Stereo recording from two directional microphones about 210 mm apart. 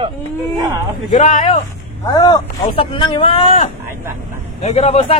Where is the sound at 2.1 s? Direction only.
20° left (ahead or behind).